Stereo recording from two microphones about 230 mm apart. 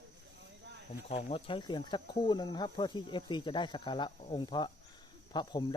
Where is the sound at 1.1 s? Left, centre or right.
Left.